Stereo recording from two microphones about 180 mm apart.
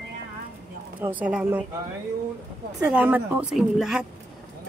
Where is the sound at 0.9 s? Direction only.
10° right (ahead or behind).